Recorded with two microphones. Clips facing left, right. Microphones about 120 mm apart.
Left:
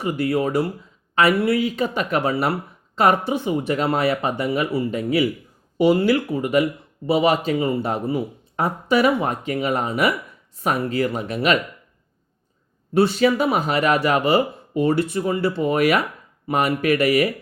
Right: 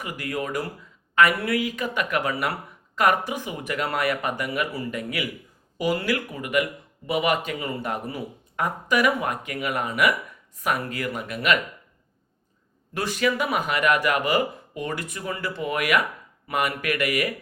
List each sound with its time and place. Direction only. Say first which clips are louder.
0.0 s speech: left 9 dB; 30° left (ahead or behind)
12.9 s speech: left 8 dB; 30° left (ahead or behind)